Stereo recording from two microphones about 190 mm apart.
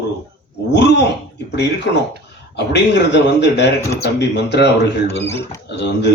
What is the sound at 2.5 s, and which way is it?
Speech, 60° left (ahead or behind).